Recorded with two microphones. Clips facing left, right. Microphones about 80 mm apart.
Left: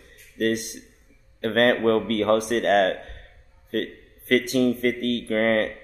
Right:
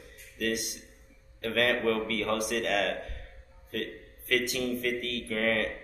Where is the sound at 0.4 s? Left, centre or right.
Left.